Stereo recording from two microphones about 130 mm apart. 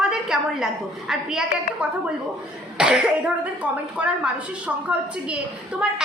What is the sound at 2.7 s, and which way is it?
A woman's voice, 5° right (ahead or behind).